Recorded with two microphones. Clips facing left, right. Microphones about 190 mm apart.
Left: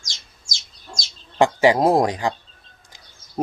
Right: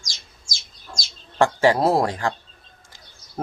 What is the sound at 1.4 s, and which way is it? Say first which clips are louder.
Speech: left 2 dB; 15° left (ahead or behind).